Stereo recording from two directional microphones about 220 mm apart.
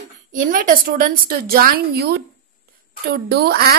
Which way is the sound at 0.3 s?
35° right (ahead or behind).